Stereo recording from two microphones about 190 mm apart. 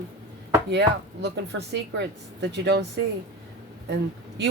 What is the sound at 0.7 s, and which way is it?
Speech, 65° right (ahead or behind).